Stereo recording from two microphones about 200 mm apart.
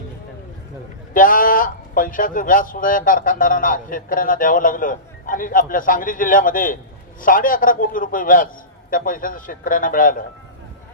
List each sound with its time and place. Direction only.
1.1 s speech: 45° left (ahead or behind)